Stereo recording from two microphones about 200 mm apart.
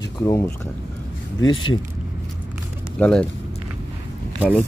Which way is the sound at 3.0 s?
5° left (ahead or behind).